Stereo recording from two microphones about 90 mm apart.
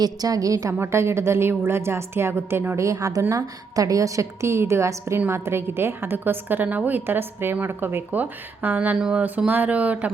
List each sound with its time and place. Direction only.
0.0 s a woman's voice: 45° right (ahead or behind)
0.7 s a woman's voice: 30° right (ahead or behind)